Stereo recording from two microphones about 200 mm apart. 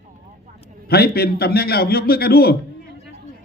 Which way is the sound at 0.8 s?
50° left (ahead or behind).